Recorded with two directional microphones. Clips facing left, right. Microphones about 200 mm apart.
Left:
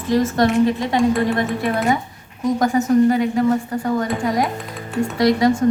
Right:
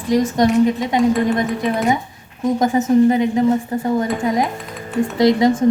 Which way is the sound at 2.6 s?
20° right (ahead or behind).